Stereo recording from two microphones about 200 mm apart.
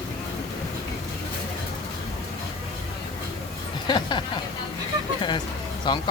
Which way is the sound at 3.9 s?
25° left (ahead or behind).